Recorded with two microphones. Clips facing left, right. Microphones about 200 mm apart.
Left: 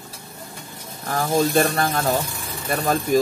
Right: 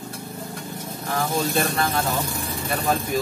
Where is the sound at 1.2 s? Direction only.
45° left (ahead or behind).